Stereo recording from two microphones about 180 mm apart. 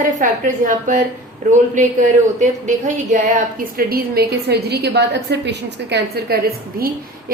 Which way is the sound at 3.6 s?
55° right (ahead or behind).